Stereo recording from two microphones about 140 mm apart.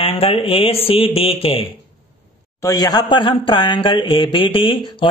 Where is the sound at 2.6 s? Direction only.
25° left (ahead or behind).